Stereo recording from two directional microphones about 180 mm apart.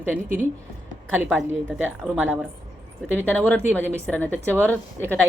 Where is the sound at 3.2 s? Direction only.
10° left (ahead or behind).